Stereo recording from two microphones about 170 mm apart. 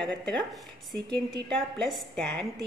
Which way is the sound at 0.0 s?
5° left (ahead or behind).